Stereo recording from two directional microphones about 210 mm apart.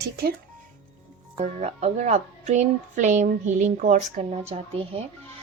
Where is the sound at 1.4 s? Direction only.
30° right (ahead or behind).